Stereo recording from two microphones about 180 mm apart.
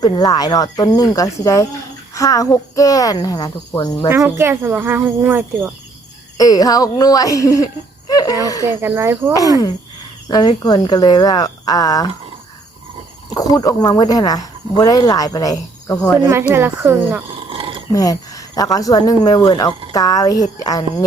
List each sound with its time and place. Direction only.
0.0 s speech: 20° left (ahead or behind)
4.1 s speech: 15° right (ahead or behind)
6.3 s speech: 20° left (ahead or behind)
8.7 s speech: 15° right (ahead or behind)
10.2 s speech: 20° left (ahead or behind)
13.3 s speech: 20° left (ahead or behind)
16.2 s speech: 10° right (ahead or behind)
17.5 s a sound: 30° right (ahead or behind)
17.9 s speech: 20° left (ahead or behind)